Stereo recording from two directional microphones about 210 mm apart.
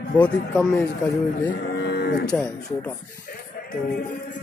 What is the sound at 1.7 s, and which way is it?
Cattle, 55° left (ahead or behind).